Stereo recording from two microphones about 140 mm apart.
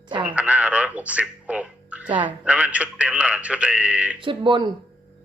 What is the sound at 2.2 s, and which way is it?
A man's voice, 10° right (ahead or behind).